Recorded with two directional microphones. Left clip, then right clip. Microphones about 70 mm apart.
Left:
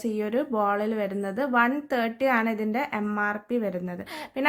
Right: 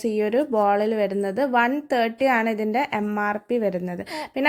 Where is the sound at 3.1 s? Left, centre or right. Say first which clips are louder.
Right 3 dB; right.